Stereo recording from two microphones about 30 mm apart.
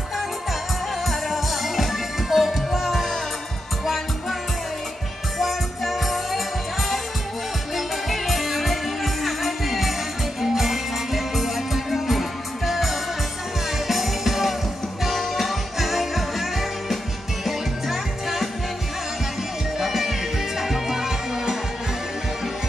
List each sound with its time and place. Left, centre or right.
1.0 s music: centre
5.4 s music: centre
7.7 s music: centre
19.8 s music: centre